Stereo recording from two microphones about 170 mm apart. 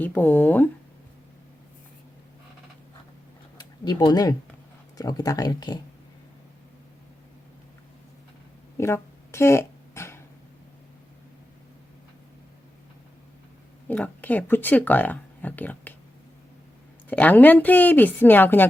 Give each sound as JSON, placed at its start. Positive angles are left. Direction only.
{"t": 0.0, "sound": "speech", "side_deg": 10}
{"t": 3.6, "sound": "speech", "side_deg": 25}
{"t": 8.8, "sound": "a sound", "side_deg": 15}
{"t": 13.8, "sound": "speech", "side_deg": 10}
{"t": 17.1, "sound": "speech", "side_deg": 10}